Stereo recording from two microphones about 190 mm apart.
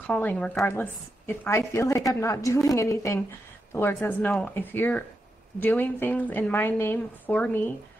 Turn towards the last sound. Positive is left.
turn(degrees=5)  # may be behind; listen again after turning